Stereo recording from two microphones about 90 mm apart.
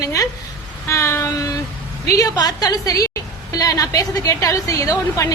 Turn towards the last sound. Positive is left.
turn(degrees=40)  # may be behind; listen again after turning